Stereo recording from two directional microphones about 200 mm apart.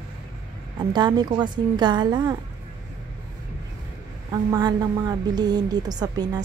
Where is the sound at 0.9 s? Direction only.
20° right (ahead or behind).